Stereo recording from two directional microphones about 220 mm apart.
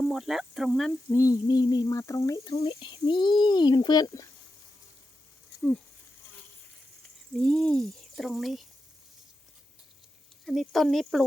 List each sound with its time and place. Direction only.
0.0 s speech: centre (ahead or behind)
1.1 s speech: 15° left (ahead or behind)
7.3 s speech: centre (ahead or behind)
10.4 s speech: centre (ahead or behind)